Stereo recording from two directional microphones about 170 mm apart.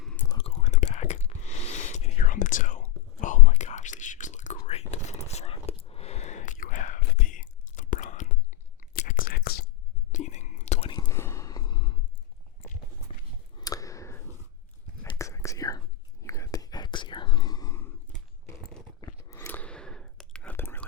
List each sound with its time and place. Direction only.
0.0 s whispering: 5° left (ahead or behind)
0.3 s whispering: 40° left (ahead or behind); by 9.6 s 65° left (ahead or behind)
10.1 s whispering: 45° left (ahead or behind)
10.9 s gasp: 20° left (ahead or behind)
13.1 s a sound: 35° left (ahead or behind)
13.6 s a sound: 20° left (ahead or behind)
15.1 s whispering: 15° left (ahead or behind)
19.0 s whispering: 15° left (ahead or behind)